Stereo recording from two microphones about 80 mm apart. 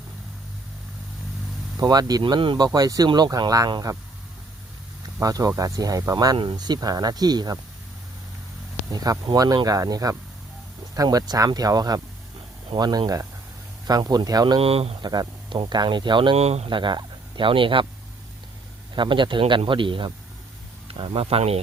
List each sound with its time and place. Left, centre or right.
1.8 s speech: right
2.2 s speech: right
2.6 s speech: right
3.9 s speech: right
5.0 s speech: right
6.3 s speech: right
9.3 s speech: right
12.7 s speech: right
18.9 s speech: right